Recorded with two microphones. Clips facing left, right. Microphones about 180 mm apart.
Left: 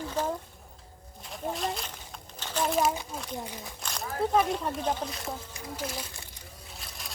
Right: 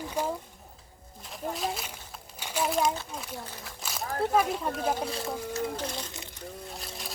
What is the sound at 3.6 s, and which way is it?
Speech, centre (ahead or behind).